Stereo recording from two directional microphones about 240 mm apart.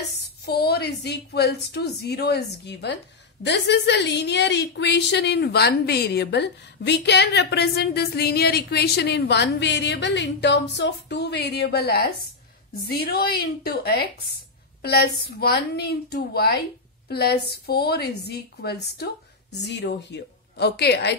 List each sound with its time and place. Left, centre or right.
0.5 s a woman's voice: left